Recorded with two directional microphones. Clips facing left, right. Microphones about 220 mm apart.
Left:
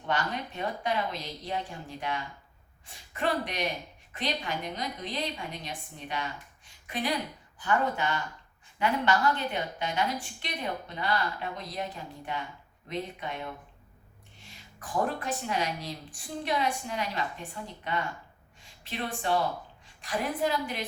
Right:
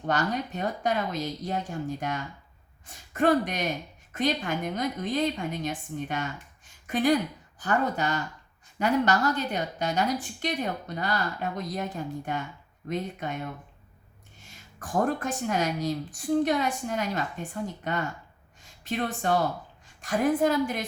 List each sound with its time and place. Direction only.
0.0 s a woman's voice: 40° right (ahead or behind)
14.8 s a woman's voice: 45° right (ahead or behind)
19.2 s a woman's voice: 45° right (ahead or behind)